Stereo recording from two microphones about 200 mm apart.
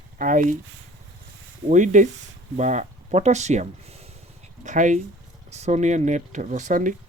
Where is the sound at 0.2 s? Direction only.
40° right (ahead or behind).